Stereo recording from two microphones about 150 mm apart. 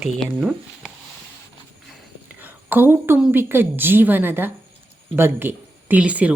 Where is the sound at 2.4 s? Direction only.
10° right (ahead or behind).